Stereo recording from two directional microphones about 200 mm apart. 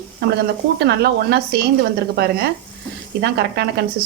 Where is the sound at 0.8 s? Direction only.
55° right (ahead or behind).